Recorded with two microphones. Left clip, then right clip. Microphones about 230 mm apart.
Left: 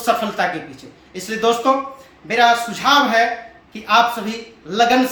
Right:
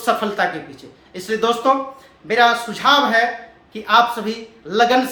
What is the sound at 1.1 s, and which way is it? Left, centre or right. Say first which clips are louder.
A man's voice: left 1 dB; right.